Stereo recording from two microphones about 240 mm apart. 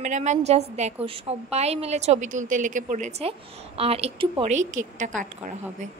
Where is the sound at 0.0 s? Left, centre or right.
Right.